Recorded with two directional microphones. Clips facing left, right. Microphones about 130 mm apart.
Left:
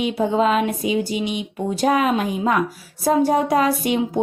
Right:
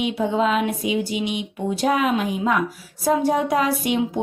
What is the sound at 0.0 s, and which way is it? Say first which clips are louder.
A woman's voice: left 2 dB; 40° left (ahead or behind).